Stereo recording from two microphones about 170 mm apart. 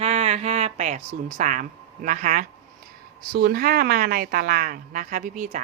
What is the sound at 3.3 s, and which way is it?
Speech, 65° right (ahead or behind).